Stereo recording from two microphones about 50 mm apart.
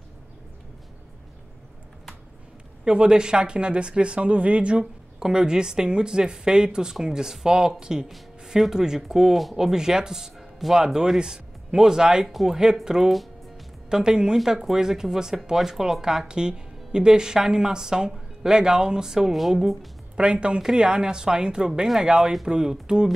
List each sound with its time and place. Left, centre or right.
2.8 s a woman's voice: centre
12.3 s speech: centre
12.8 s a woman's voice: centre
20.2 s a woman's voice: right